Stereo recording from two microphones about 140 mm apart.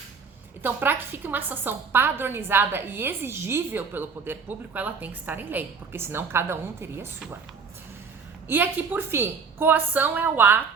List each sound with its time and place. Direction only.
0.6 s a woman's voice: 15° right (ahead or behind)
8.4 s a woman's voice: 15° right (ahead or behind)